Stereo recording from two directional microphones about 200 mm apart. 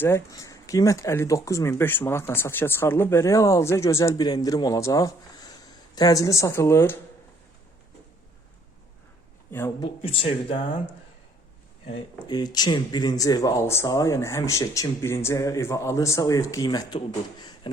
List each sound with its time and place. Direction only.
0.0 s speech: 15° left (ahead or behind)
9.5 s speech: 10° left (ahead or behind)
10.0 s speech: 30° left (ahead or behind)
12.3 s speech: 20° left (ahead or behind)